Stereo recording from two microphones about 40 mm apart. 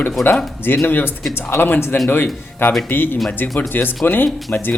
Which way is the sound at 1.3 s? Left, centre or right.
Left.